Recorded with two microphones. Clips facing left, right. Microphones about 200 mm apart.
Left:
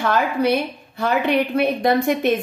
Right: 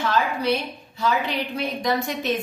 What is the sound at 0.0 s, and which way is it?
A woman's voice, 55° left (ahead or behind).